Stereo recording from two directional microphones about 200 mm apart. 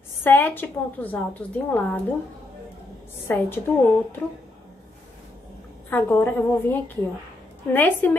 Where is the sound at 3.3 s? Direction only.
10° left (ahead or behind).